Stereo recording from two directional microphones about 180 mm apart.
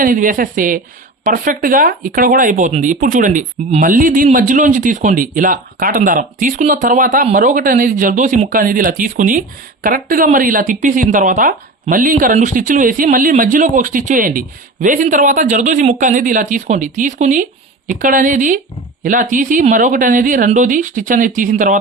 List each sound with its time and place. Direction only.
0.0 s speech: 50° right (ahead or behind)